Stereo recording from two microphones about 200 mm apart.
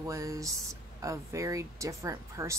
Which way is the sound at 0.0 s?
15° right (ahead or behind).